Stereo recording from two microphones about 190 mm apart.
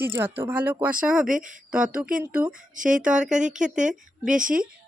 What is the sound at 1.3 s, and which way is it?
Speech, 45° right (ahead or behind).